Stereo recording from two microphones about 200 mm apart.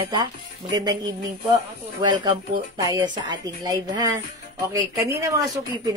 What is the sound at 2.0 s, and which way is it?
A woman's voice, 20° right (ahead or behind).